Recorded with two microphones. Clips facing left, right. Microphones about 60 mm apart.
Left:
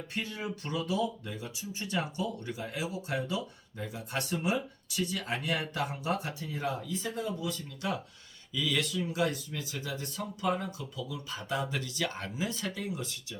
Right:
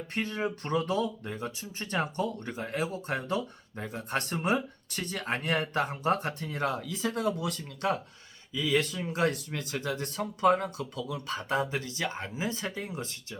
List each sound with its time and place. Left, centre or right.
0.1 s speech: right
7.8 s speech: right
8.5 s speech: right
11.6 s speech: right